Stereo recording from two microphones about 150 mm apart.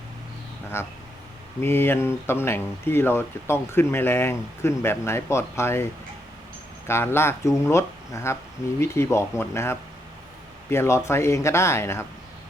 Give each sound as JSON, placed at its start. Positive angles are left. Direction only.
{"t": 0.8, "sound": "speech", "side_deg": 15}